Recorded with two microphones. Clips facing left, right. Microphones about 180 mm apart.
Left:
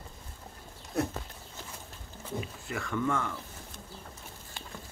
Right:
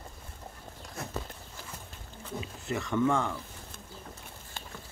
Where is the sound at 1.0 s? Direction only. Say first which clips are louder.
Left 11 dB; 65° left (ahead or behind).